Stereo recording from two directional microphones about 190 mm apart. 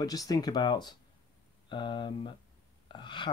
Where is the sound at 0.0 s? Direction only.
20° left (ahead or behind).